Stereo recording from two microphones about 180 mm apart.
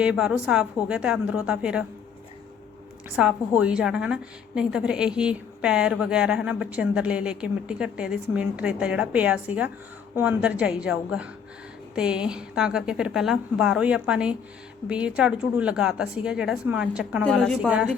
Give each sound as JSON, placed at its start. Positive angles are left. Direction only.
{"t": 0.0, "sound": "a woman's voice", "side_deg": -5}
{"t": 3.2, "sound": "a woman's voice", "side_deg": -5}